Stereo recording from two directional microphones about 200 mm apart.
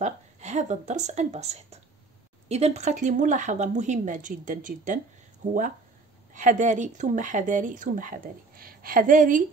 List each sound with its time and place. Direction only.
0.0 s speech: 35° right (ahead or behind)